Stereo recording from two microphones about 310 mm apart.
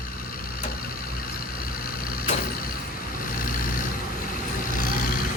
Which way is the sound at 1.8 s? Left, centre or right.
Left.